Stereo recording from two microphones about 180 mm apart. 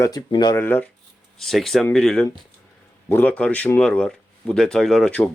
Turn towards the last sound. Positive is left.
turn(degrees=5)  # may be behind; listen again after turning